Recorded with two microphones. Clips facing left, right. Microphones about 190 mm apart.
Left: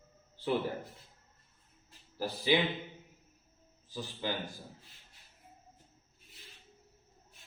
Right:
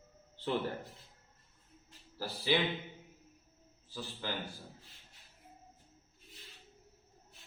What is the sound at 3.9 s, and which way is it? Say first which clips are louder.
Speech: left 4 dB; 15° left (ahead or behind).